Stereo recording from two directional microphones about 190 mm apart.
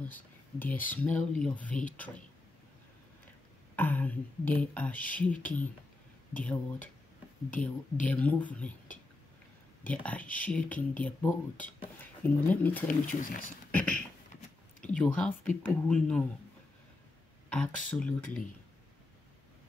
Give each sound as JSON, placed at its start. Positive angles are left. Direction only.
{"t": 0.1, "sound": "speech", "side_deg": 10}
{"t": 3.7, "sound": "speech", "side_deg": 10}
{"t": 9.8, "sound": "speech", "side_deg": 10}
{"t": 13.0, "sound": "speech", "side_deg": 45}
{"t": 15.0, "sound": "speech", "side_deg": 10}
{"t": 17.5, "sound": "speech", "side_deg": 5}